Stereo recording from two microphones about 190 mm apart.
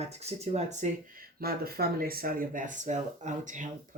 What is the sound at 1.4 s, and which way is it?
Speech, 55° right (ahead or behind).